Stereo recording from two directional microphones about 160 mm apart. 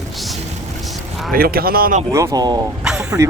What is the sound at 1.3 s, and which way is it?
Speech, 65° right (ahead or behind).